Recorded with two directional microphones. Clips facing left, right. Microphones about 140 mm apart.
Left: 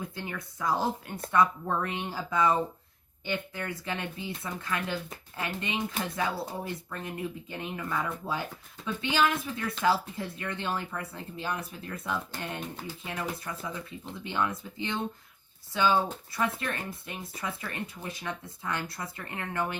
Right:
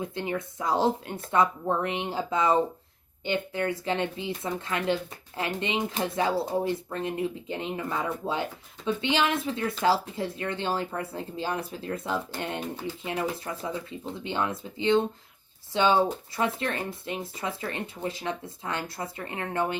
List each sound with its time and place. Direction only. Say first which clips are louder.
0.0 s speech: right 7 dB; 25° right (ahead or behind)